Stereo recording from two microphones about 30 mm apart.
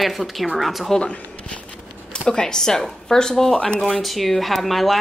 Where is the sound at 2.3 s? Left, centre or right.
Left.